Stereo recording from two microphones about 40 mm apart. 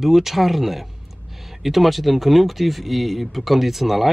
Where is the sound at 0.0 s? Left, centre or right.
Centre.